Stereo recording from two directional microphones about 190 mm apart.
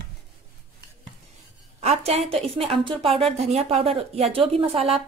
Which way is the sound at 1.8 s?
35° right (ahead or behind).